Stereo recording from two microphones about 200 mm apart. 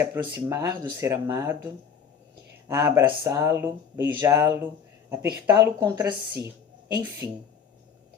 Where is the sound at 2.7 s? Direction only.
15° right (ahead or behind).